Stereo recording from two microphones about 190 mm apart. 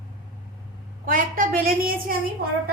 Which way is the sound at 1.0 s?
45° right (ahead or behind).